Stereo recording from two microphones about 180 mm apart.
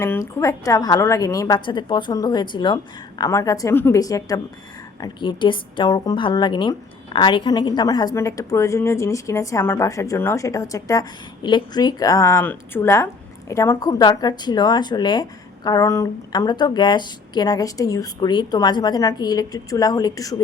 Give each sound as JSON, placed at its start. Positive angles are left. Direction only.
{"t": 0.0, "sound": "a woman's voice", "side_deg": 15}